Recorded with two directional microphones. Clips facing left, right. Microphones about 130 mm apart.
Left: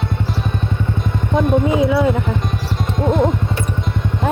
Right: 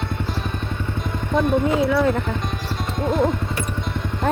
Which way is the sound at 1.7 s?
15° left (ahead or behind).